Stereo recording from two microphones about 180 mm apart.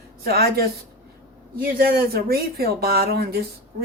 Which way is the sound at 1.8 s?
60° right (ahead or behind).